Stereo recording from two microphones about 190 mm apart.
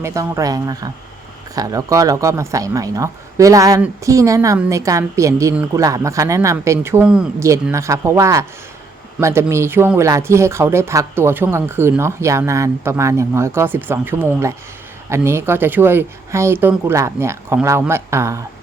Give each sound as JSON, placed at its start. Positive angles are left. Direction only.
{"t": 0.0, "sound": "speech", "side_deg": -15}